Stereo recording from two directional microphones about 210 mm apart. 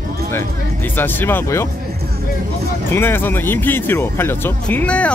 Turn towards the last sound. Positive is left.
turn(degrees=5)  # may be behind; listen again after turning